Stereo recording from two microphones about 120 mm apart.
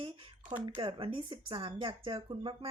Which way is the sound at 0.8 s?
45° right (ahead or behind).